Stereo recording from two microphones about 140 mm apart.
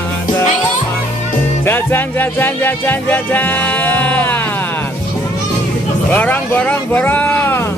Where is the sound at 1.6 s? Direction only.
15° left (ahead or behind).